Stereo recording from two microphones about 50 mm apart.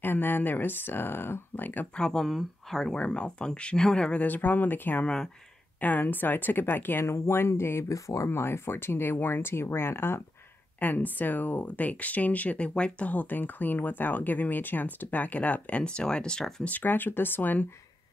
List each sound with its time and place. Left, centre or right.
0.0 s speech: left
2.0 s speech: centre
2.2 s speech: centre
2.9 s speech: left
4.2 s speech: left
5.0 s speech: centre
5.8 s speech: left
7.2 s speech: left
8.3 s speech: left
10.8 s speech: left; by 16.6 s centre
16.6 s speech: left